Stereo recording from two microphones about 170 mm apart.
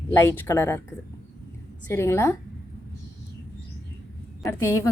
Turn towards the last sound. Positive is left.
turn(degrees=15)  # may be behind; listen again after turning